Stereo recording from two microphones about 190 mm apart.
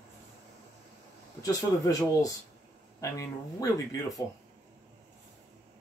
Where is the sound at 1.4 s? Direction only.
15° left (ahead or behind).